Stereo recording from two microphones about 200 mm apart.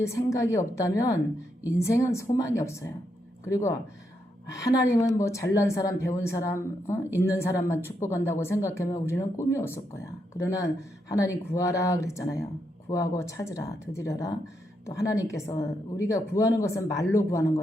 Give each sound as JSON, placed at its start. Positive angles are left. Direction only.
{"t": 0.0, "sound": "speech", "side_deg": 15}